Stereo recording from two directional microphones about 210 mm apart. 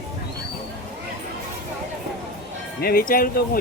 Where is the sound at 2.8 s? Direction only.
45° left (ahead or behind).